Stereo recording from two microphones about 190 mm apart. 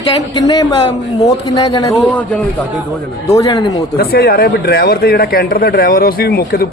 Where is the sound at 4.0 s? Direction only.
55° left (ahead or behind).